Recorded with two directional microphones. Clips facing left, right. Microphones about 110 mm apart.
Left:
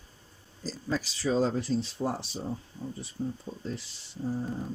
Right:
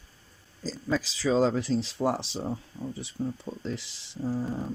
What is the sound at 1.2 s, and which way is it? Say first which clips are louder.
Speech: right 3 dB; 90° right.